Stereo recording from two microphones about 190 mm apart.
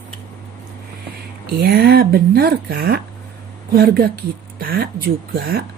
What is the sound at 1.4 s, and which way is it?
Speech, 55° right (ahead or behind).